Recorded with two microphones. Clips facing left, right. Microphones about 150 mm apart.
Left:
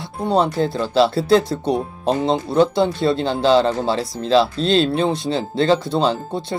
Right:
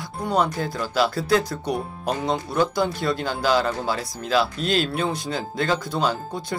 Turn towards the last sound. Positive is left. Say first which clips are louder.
# left 5 dB
turn(degrees=25)  # may be behind; listen again after turning